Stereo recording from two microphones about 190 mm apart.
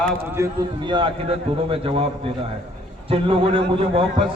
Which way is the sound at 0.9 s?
30° right (ahead or behind).